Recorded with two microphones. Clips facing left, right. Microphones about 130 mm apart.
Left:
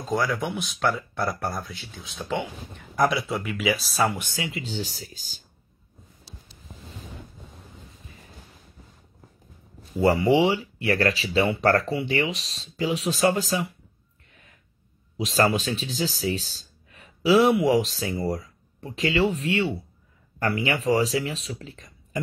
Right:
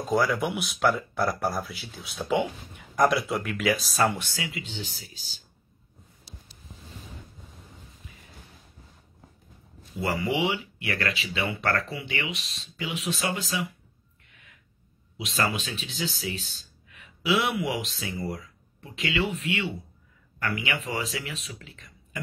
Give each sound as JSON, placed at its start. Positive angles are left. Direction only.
{"t": 0.1, "sound": "speech", "side_deg": 0}
{"t": 4.2, "sound": "speech", "side_deg": 25}
{"t": 9.9, "sound": "speech", "side_deg": 35}
{"t": 14.3, "sound": "gasp", "side_deg": 40}
{"t": 15.1, "sound": "speech", "side_deg": 35}